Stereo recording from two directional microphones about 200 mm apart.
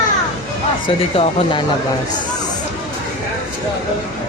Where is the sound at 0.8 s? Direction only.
25° left (ahead or behind).